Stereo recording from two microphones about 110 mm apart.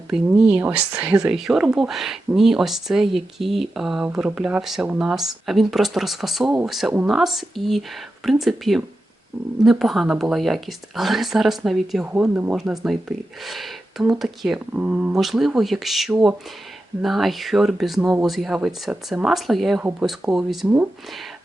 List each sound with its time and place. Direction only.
0.1 s speech: 10° right (ahead or behind)
12.1 s speech: 15° right (ahead or behind)
12.5 s speech: 5° right (ahead or behind)